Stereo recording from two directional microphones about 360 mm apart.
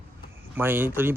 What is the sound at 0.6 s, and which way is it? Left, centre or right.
Speech, centre.